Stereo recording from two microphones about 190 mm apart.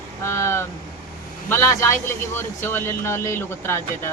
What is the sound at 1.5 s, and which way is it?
A man's voice, 15° left (ahead or behind).